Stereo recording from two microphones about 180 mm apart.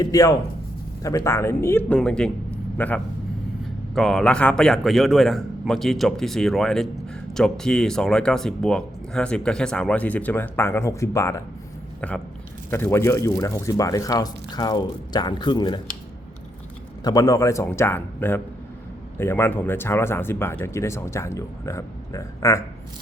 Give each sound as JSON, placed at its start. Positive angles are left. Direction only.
{"t": 0.0, "sound": "speech", "side_deg": 20}
{"t": 11.9, "sound": "speech", "side_deg": 5}
{"t": 17.0, "sound": "speech", "side_deg": 20}